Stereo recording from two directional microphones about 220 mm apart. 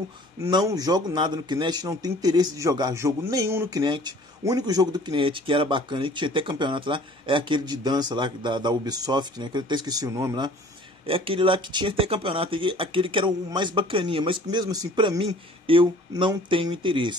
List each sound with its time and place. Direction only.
0.4 s a man's voice: 15° right (ahead or behind)